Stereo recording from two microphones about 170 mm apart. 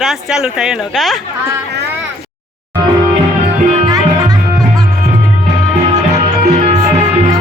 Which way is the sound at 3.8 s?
25° right (ahead or behind).